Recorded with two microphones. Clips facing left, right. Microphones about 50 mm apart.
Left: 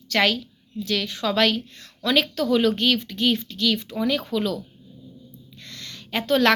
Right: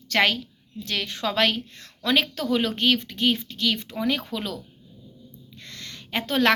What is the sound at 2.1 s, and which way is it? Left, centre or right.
A woman's voice, right.